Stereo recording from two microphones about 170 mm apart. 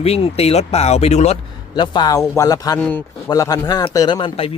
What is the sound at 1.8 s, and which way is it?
A man's voice, 25° left (ahead or behind).